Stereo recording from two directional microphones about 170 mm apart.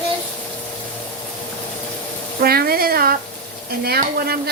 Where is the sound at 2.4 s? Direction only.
60° right (ahead or behind).